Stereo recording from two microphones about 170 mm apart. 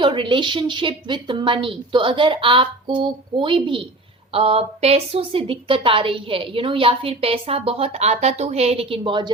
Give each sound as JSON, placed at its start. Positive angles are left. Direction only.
{"t": 0.0, "sound": "a woman's voice", "side_deg": -30}